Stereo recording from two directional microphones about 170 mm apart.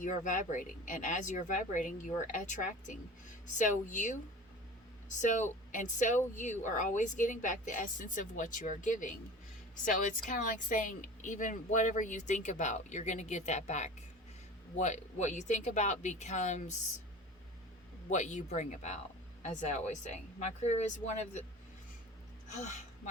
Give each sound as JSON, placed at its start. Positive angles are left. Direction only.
{"t": 0.0, "sound": "speech", "side_deg": 50}
{"t": 18.1, "sound": "speech", "side_deg": 45}
{"t": 22.4, "sound": "speech", "side_deg": 45}